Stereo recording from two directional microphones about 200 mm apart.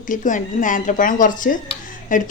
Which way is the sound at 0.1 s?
40° left (ahead or behind).